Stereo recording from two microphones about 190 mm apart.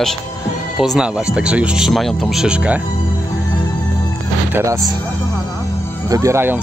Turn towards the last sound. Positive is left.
turn(degrees=-10)  # may be behind; listen again after turning